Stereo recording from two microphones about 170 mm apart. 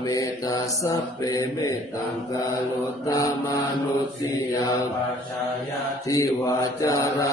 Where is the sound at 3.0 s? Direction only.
20° left (ahead or behind).